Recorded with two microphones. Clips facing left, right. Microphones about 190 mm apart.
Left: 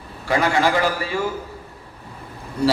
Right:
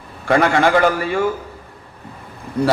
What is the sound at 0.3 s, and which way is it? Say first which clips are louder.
Speech: right 4 dB; 55° right (ahead or behind).